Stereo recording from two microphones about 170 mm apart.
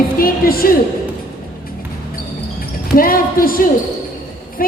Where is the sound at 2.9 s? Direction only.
60° left (ahead or behind).